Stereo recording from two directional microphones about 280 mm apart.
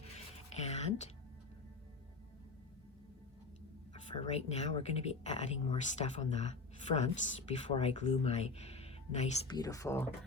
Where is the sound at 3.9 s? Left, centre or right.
Left.